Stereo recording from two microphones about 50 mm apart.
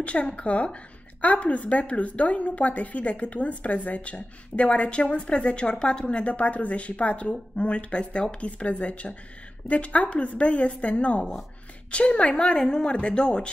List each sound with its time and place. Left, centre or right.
0.0 s a woman's voice: left